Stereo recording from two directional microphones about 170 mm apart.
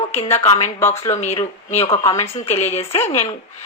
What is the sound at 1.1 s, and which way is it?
Speech, 40° left (ahead or behind).